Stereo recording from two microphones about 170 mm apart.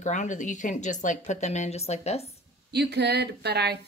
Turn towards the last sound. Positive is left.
turn(degrees=-70)  # may be behind; listen again after turning